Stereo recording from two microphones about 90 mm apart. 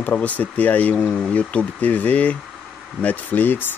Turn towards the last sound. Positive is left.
turn(degrees=20)  # may be behind; listen again after turning